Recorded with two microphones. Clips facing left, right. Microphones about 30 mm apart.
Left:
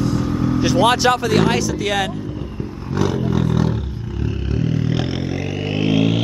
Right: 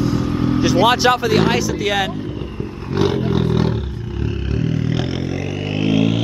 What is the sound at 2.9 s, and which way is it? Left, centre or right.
Roar, right.